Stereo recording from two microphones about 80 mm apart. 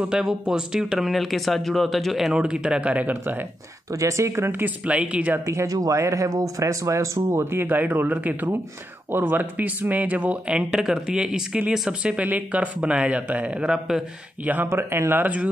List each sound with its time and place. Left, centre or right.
0.1 s speech: centre; by 3.4 s right
3.9 s speech: right; by 5.4 s centre
5.4 s speech: right
7.2 s speech: right; by 14.0 s centre
14.4 s speech: right